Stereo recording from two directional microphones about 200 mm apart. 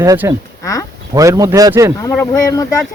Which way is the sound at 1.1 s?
15° right (ahead or behind).